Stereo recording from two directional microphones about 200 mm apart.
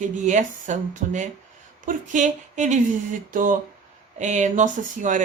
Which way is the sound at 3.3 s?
45° right (ahead or behind).